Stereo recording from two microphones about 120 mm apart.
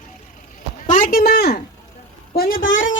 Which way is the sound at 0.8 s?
90° left.